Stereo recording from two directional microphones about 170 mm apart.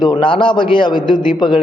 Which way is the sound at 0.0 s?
30° left (ahead or behind).